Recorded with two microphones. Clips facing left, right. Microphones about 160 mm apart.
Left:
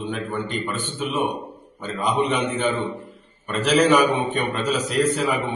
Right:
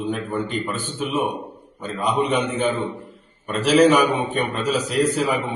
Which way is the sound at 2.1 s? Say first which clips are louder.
Right 1 dB; 10° right (ahead or behind).